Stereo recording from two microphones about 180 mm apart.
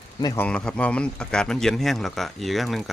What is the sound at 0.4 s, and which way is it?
A man's voice, 5° left (ahead or behind).